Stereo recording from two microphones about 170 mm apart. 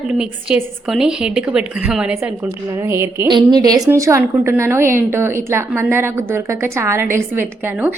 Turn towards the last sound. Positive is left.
turn(degrees=-10)  # may be behind; listen again after turning